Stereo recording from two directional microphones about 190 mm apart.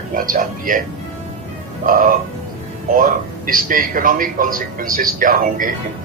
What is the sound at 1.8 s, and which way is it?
A man's voice, 45° right (ahead or behind).